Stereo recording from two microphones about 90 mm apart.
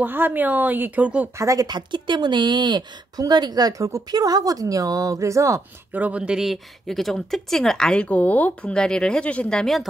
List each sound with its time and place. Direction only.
0.0 s speech: 20° right (ahead or behind)
1.4 s speech: 40° right (ahead or behind)
5.9 s speech: 15° right (ahead or behind); by 9.8 s 10° left (ahead or behind)